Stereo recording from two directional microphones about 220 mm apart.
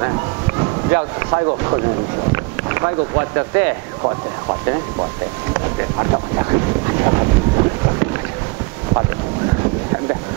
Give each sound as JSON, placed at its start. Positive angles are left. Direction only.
{"t": 0.6, "sound": "speech", "side_deg": -20}
{"t": 5.5, "sound": "boat", "side_deg": -20}